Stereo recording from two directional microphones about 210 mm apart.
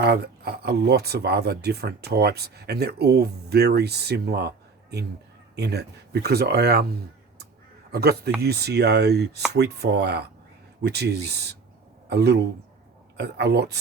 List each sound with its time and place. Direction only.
0.0 s speech: 50° right (ahead or behind)
7.9 s a man's voice: 50° right (ahead or behind)